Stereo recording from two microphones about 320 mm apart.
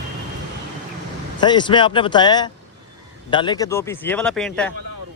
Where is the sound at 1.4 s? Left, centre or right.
Centre.